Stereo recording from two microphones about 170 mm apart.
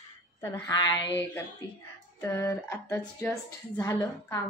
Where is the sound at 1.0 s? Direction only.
90° left.